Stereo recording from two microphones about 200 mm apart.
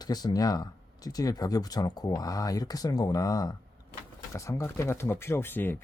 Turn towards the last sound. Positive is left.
turn(degrees=10)  # may be behind; listen again after turning